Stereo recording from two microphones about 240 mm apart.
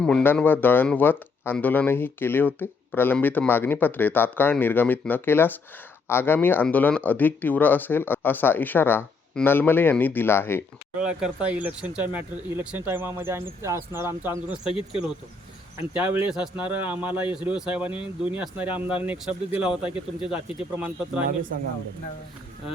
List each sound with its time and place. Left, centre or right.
0.0 s speech: centre
11.0 s speech: centre
15.9 s a man's voice: centre
18.7 s speech: left
19.0 s a man's voice: centre